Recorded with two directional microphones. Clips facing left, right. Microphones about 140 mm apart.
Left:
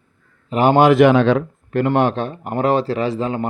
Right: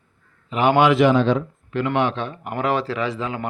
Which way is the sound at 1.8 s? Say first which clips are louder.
Left 4 dB; 45° left (ahead or behind).